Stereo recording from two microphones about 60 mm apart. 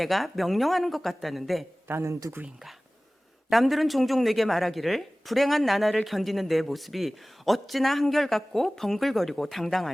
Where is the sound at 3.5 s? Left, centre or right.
Centre.